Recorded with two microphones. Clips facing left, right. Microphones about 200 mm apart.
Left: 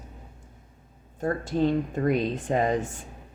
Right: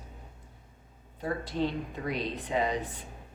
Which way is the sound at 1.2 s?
45° left (ahead or behind).